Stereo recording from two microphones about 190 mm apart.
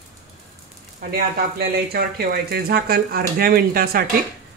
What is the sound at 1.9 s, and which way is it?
Speech, 55° right (ahead or behind).